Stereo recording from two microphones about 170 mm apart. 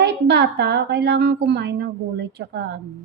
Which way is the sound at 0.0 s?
90° right.